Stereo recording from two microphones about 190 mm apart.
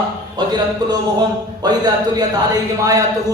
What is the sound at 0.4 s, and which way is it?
A man's voice, 25° right (ahead or behind).